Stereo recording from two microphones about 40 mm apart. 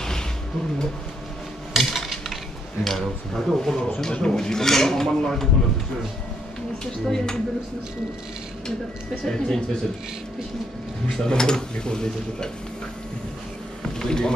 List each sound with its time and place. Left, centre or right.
1.8 s cutlery: centre
2.8 s speech: centre
6.8 s speech: centre
9.2 s speech: centre
11.2 s speech: centre
13.8 s a sound: centre